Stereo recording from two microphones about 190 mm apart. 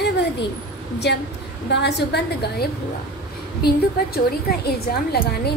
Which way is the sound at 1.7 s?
65° left (ahead or behind).